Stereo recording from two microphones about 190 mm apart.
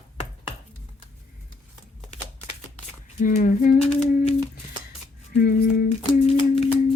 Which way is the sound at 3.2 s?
40° left (ahead or behind).